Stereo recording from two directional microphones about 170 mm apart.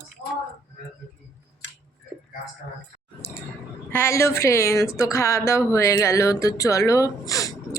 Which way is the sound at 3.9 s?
15° left (ahead or behind).